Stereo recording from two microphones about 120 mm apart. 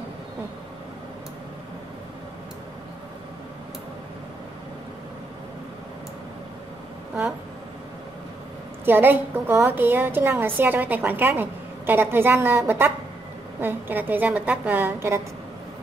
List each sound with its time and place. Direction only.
8.8 s a woman's voice: 15° right (ahead or behind)